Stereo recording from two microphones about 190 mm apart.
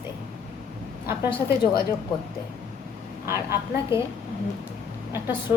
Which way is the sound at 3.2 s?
15° right (ahead or behind).